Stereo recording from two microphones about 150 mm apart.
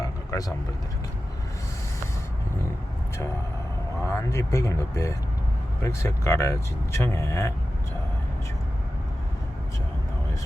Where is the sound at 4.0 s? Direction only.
20° left (ahead or behind).